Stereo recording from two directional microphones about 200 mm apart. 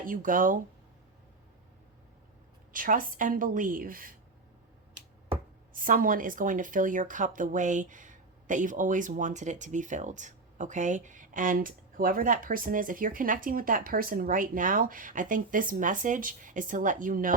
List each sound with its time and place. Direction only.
0.0 s a woman's voice: 40° right (ahead or behind)
2.7 s a woman's voice: 45° right (ahead or behind)
5.7 s speech: 45° right (ahead or behind)